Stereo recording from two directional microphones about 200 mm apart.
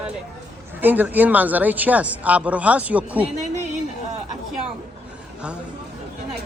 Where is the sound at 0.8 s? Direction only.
10° right (ahead or behind).